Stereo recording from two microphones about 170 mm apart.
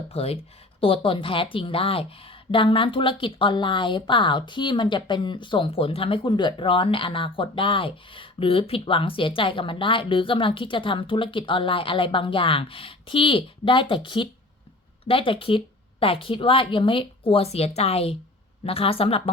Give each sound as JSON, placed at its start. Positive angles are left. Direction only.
{"t": 0.1, "sound": "speech", "side_deg": 35}